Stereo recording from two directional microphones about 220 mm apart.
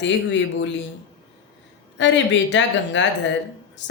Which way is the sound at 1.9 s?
55° left (ahead or behind).